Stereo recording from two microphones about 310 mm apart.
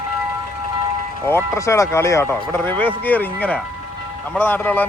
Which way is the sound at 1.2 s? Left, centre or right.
Centre.